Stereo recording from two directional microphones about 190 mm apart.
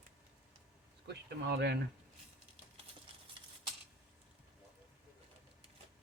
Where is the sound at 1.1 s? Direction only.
60° right (ahead or behind).